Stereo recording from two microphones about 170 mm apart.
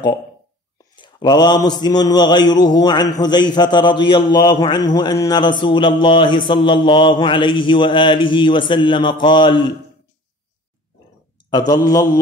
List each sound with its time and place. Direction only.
0.9 s mantra: 25° left (ahead or behind)
11.5 s mantra: 25° left (ahead or behind)